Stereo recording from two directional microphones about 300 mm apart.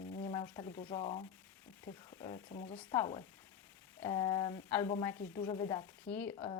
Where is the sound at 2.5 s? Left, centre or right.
Left; by 6.3 s centre.